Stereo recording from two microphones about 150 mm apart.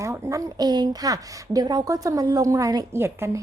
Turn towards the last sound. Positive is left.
turn(degrees=-15)  # may be behind; listen again after turning